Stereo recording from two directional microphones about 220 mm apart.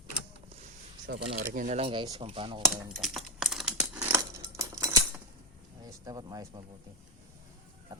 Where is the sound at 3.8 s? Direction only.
15° right (ahead or behind).